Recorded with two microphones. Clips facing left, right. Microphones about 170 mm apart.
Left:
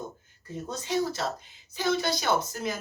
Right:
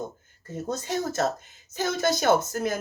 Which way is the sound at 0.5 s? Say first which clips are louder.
Right 1 dB; 45° right (ahead or behind).